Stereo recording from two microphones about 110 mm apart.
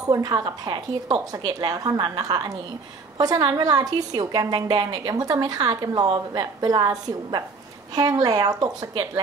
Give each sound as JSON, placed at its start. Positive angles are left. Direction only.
{"t": 0.0, "sound": "a woman's voice", "side_deg": -35}